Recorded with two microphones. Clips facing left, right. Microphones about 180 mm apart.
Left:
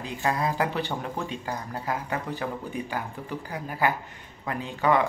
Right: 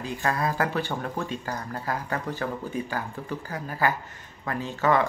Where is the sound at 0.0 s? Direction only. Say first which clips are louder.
Even; 20° left (ahead or behind).